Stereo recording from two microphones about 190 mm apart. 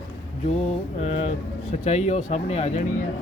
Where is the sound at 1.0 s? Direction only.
35° left (ahead or behind).